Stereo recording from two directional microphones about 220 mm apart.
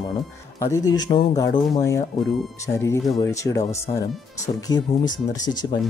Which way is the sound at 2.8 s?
15° left (ahead or behind).